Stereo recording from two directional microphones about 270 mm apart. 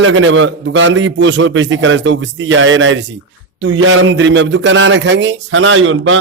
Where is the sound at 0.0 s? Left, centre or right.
Right.